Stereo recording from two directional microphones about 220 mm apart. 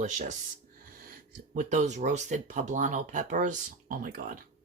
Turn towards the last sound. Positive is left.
turn(degrees=-40)  # may be behind; listen again after turning